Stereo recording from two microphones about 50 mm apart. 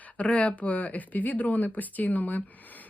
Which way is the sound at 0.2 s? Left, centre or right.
Left.